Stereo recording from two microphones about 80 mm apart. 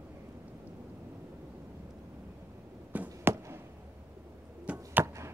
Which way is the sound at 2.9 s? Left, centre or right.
Right.